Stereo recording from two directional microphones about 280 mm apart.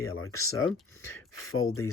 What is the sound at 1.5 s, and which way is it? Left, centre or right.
Speech, left.